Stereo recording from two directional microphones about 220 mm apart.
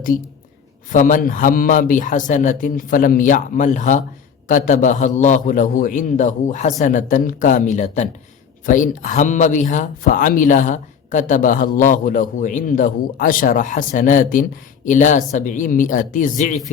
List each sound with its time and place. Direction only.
0.9 s speech: 35° left (ahead or behind)